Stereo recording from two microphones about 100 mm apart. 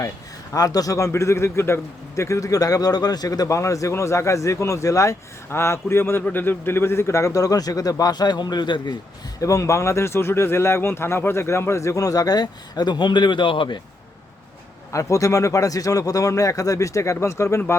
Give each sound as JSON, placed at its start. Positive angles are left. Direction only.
{"t": 0.5, "sound": "a man's voice", "side_deg": 40}
{"t": 9.4, "sound": "speech", "side_deg": 30}
{"t": 14.9, "sound": "a man's voice", "side_deg": 35}